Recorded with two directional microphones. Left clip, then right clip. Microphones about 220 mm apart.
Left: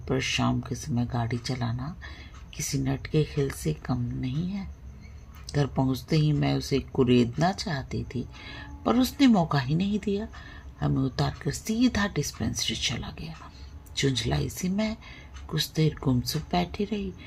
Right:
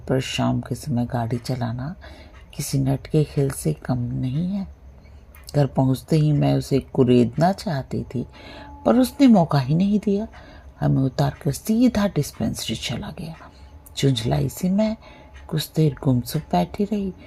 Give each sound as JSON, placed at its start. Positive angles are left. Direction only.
{"t": 0.0, "sound": "speech", "side_deg": -30}